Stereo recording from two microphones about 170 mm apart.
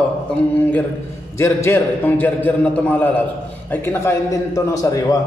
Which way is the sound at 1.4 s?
15° left (ahead or behind).